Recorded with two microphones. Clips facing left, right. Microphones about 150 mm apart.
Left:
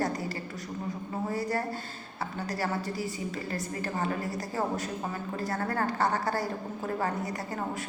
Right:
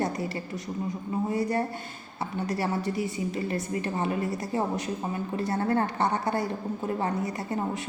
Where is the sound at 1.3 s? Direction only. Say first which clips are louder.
Right 2 dB; 20° right (ahead or behind).